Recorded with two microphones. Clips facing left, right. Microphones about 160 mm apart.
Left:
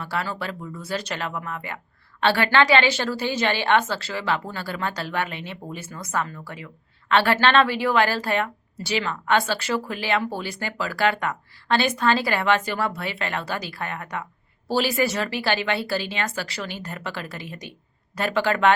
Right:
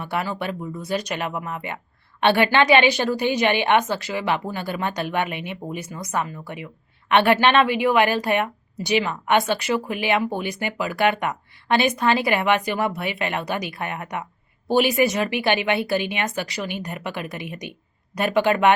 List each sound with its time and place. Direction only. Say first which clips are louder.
0.0 s speech: right 3 dB; 20° right (ahead or behind)